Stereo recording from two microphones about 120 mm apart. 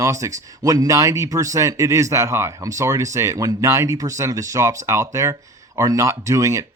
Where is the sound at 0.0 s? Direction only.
25° right (ahead or behind).